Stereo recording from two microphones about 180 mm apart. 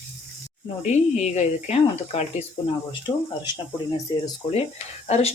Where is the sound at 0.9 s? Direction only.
40° left (ahead or behind).